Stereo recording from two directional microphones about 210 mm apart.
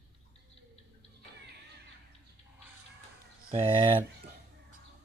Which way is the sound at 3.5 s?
25° right (ahead or behind).